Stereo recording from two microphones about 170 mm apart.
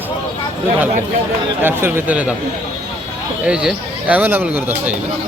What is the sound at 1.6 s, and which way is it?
Speech, 10° right (ahead or behind).